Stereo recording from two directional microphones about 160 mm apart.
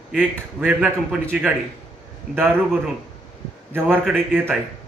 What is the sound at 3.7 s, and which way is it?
Speech, 10° right (ahead or behind).